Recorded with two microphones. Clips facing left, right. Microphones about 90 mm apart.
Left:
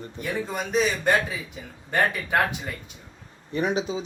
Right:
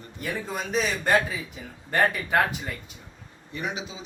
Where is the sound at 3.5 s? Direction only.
40° left (ahead or behind).